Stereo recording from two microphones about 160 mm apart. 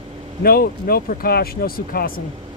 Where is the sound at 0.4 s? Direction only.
70° left (ahead or behind).